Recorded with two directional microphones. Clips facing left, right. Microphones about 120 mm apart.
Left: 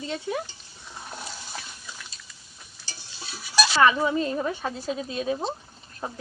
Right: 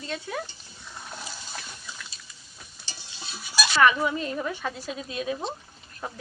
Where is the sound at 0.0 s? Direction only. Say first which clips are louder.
Left 4 dB; 15° left (ahead or behind).